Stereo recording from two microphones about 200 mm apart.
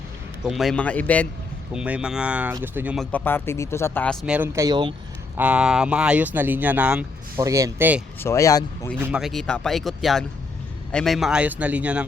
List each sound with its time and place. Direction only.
0.4 s speech: centre (ahead or behind)
1.7 s speech: 5° right (ahead or behind)
3.1 s speech: 10° left (ahead or behind); by 4.9 s 20° right (ahead or behind)
5.4 s speech: 5° right (ahead or behind)
8.2 s speech: 15° left (ahead or behind)
9.0 s speech: 5° right (ahead or behind)